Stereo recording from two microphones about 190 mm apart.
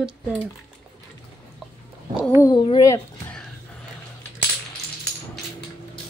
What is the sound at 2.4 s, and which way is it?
Speech, 25° left (ahead or behind).